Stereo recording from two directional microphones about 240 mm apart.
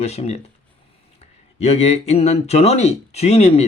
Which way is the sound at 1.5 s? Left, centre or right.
Left.